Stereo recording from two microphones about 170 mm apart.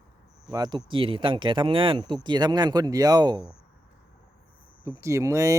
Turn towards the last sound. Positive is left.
turn(degrees=-20)  # may be behind; listen again after turning